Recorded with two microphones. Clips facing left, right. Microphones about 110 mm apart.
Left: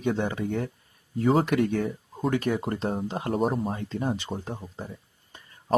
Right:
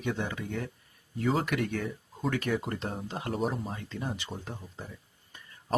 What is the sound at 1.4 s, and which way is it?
Speech, 30° left (ahead or behind).